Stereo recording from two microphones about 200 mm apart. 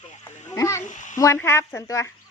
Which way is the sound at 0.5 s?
15° left (ahead or behind).